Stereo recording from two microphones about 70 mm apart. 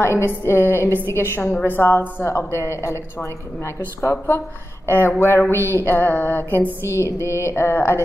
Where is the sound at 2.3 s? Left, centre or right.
Left.